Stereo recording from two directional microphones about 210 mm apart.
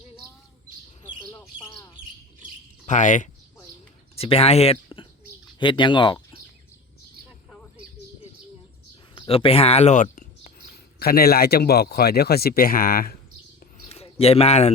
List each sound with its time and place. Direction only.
1.0 s bird: 20° left (ahead or behind)
2.8 s speech: 35° left (ahead or behind)
9.1 s speech: 25° left (ahead or behind); by 13.1 s 45° left (ahead or behind)
13.8 s a sound: 30° left (ahead or behind)